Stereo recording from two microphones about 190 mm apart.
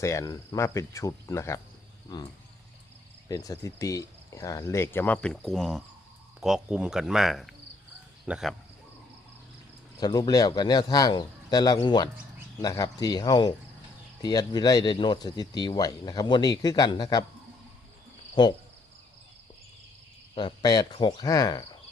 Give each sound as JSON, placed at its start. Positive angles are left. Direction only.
{"t": 0.0, "sound": "speech", "side_deg": 15}
{"t": 3.2, "sound": "speech", "side_deg": 15}
{"t": 10.0, "sound": "speech", "side_deg": 20}
{"t": 18.4, "sound": "speech", "side_deg": 25}
{"t": 20.3, "sound": "speech", "side_deg": 25}